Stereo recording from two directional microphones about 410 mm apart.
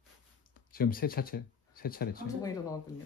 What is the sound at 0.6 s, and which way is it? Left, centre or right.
Speech, left.